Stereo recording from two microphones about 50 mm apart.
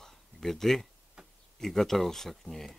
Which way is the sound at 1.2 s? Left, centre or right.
Centre.